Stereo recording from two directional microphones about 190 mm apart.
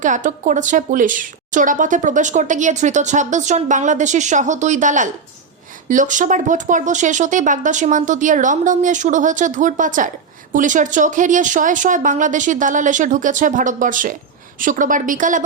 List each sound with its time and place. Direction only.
0.0 s a woman's voice: 40° right (ahead or behind)